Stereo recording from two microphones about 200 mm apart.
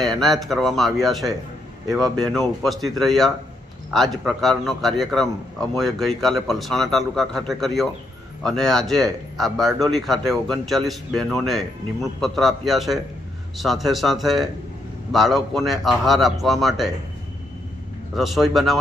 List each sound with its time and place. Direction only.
0.0 s speech: centre (ahead or behind)
18.1 s speech: centre (ahead or behind)